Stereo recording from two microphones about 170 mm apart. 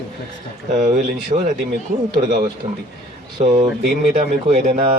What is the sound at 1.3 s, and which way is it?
Speech, 30° right (ahead or behind).